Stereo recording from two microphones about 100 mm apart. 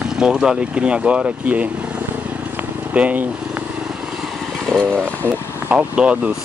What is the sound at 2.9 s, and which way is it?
Speech, 15° right (ahead or behind).